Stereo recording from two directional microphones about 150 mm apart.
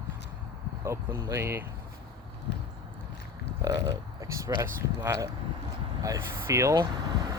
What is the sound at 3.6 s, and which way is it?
Speech, 25° right (ahead or behind).